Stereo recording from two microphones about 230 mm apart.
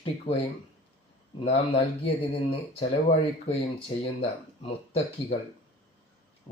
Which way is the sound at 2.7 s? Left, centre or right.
Left.